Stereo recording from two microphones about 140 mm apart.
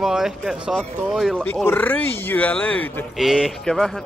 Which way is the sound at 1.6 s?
10° left (ahead or behind).